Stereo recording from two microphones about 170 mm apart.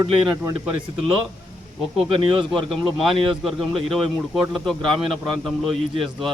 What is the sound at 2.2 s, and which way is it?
Speech, 30° right (ahead or behind).